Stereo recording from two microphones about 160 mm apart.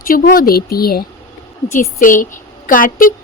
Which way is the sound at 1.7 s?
55° left (ahead or behind).